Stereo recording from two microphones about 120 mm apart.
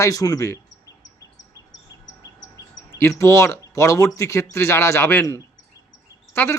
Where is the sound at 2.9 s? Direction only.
20° left (ahead or behind).